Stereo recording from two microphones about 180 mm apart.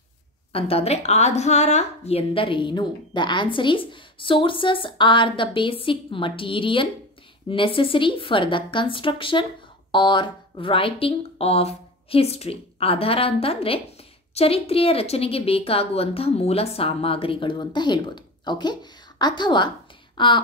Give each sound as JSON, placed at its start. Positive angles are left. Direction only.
{"t": 0.5, "sound": "a woman's voice", "side_deg": 30}